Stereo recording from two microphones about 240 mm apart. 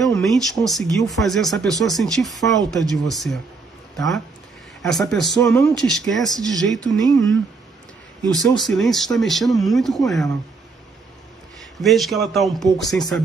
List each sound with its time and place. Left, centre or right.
0.0 s speech: centre
8.3 s speech: centre
11.8 s speech: centre